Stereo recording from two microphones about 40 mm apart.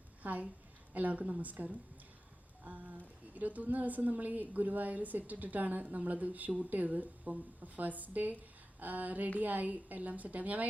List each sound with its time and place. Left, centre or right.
0.2 s a woman's voice: right